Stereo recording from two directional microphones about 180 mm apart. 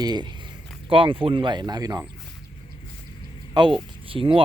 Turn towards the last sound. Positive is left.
turn(degrees=-30)  # may be behind; listen again after turning